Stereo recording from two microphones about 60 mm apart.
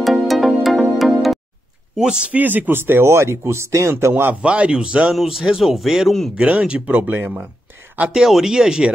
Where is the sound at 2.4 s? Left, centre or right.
Right.